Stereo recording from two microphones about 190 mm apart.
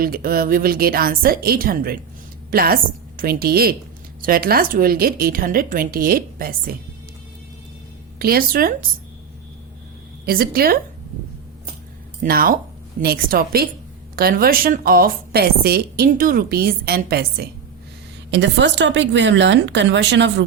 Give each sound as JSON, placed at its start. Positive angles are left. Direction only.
{"t": 0.0, "sound": "a woman's voice", "side_deg": -50}
{"t": 8.2, "sound": "a woman's voice", "side_deg": -50}
{"t": 10.2, "sound": "a woman's voice", "side_deg": -50}
{"t": 12.2, "sound": "a woman's voice", "side_deg": -50}
{"t": 18.3, "sound": "speech", "side_deg": -65}